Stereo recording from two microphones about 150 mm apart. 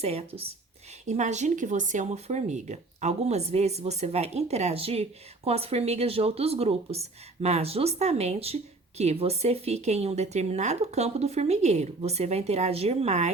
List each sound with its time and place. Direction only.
0.0 s speech: 45° right (ahead or behind)